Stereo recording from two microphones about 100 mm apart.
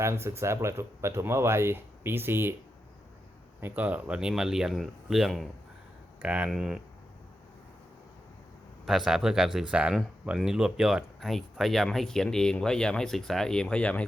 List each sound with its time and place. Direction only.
0.0 s speech: 25° right (ahead or behind)
3.6 s speech: 15° right (ahead or behind); by 5.5 s centre (ahead or behind)
6.2 s speech: 10° right (ahead or behind)
8.9 s speech: 5° right (ahead or behind); by 14.0 s 10° left (ahead or behind)